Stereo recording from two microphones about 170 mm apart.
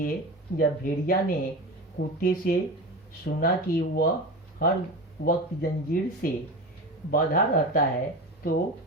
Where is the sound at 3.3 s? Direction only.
70° left (ahead or behind).